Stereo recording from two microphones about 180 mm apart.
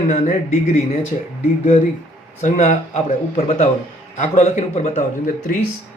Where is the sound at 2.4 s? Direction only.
40° left (ahead or behind).